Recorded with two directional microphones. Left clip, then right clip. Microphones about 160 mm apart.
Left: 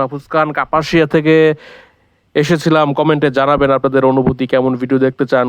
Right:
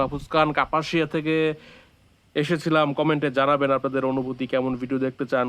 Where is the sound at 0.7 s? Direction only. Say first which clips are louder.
Left 11 dB; 55° left (ahead or behind).